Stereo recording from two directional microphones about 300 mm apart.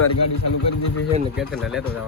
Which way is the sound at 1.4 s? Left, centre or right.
Centre.